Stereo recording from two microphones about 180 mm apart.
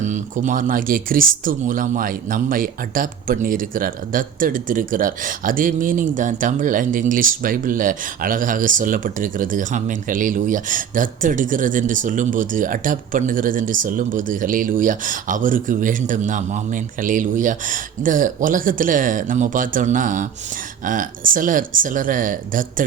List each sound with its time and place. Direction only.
0.0 s speech: 45° right (ahead or behind)